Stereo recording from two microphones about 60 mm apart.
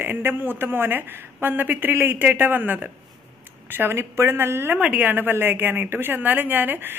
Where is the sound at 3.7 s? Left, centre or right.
Right.